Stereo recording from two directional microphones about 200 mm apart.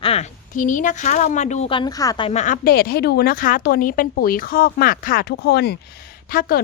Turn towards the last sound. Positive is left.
turn(degrees=50)  # may be behind; listen again after turning